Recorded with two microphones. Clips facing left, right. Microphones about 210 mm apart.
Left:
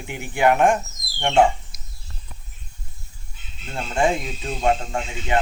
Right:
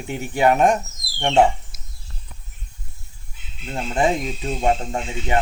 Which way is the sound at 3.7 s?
20° right (ahead or behind).